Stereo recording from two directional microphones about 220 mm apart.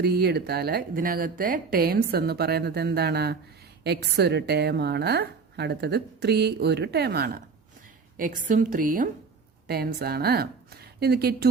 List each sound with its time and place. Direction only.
0.0 s a woman's voice: 45° right (ahead or behind)